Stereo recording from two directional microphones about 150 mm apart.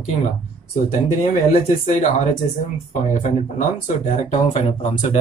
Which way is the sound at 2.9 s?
55° left (ahead or behind).